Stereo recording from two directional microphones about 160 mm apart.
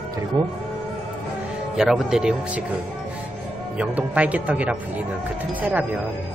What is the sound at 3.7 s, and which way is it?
Speech, 10° right (ahead or behind).